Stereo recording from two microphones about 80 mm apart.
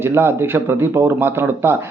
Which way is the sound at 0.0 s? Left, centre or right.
Right.